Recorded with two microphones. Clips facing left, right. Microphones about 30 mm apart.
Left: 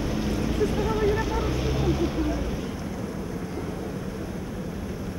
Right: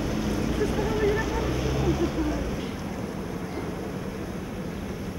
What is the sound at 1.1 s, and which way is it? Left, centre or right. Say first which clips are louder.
Vehicle: even; centre.